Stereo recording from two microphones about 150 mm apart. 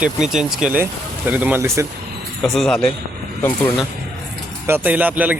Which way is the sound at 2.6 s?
5° left (ahead or behind).